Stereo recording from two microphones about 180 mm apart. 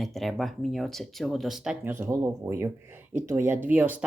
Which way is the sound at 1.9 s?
15° right (ahead or behind).